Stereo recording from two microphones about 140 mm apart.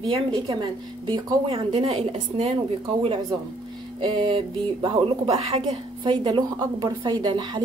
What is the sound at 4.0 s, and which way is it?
A woman's voice, 35° right (ahead or behind).